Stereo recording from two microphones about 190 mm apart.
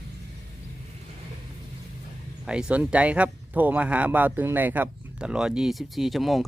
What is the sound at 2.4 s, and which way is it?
Speech, 5° right (ahead or behind).